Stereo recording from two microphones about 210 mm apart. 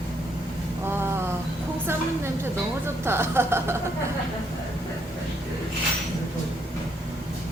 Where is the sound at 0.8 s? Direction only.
10° right (ahead or behind).